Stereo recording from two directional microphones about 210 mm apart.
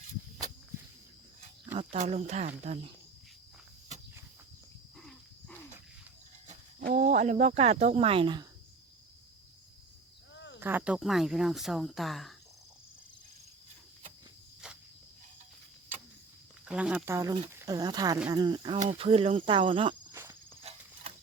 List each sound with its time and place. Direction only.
1.4 s speech: 30° right (ahead or behind)
4.9 s wild animals: centre (ahead or behind)
6.5 s speech: 35° right (ahead or behind)
10.3 s cricket: 60° left (ahead or behind)
10.6 s speech: 10° right (ahead or behind)
14.6 s cricket: 5° right (ahead or behind)
16.6 s speech: 5° right (ahead or behind); by 20.0 s 25° right (ahead or behind)
20.7 s cricket: 30° right (ahead or behind)